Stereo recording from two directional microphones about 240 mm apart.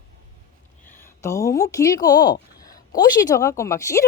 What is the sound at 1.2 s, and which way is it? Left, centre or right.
A woman's voice, centre.